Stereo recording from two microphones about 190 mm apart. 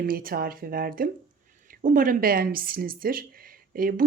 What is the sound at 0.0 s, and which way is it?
Speech, 50° right (ahead or behind).